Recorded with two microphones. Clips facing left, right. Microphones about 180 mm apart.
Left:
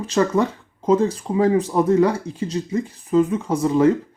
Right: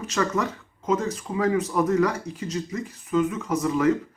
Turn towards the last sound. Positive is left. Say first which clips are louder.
# left 5 dB
turn(degrees=30)  # may be behind; listen again after turning